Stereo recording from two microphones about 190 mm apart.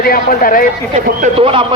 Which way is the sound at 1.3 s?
30° right (ahead or behind).